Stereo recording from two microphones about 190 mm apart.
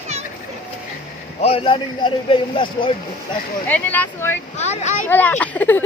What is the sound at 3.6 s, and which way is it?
Speech, 10° left (ahead or behind).